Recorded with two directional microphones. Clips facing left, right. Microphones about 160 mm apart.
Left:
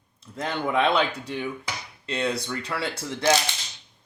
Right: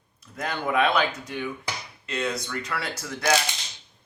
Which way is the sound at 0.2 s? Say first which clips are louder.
Left 2 dB; 25° left (ahead or behind).